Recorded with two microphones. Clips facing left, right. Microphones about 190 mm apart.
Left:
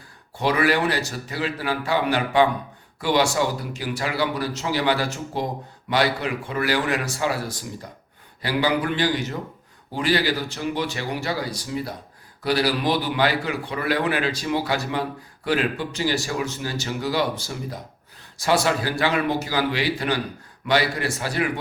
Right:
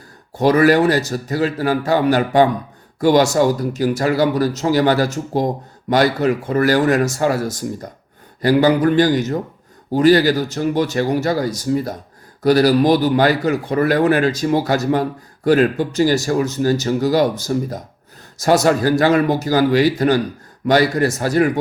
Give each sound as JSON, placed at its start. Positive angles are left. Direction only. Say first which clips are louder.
{"t": 0.3, "sound": "speech", "louder": "right 8 dB", "side_deg": -40}